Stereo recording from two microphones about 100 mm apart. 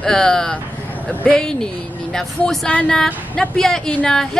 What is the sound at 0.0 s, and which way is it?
A woman's voice, 5° left (ahead or behind).